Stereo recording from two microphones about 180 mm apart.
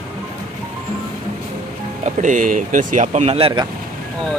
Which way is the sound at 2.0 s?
45° right (ahead or behind).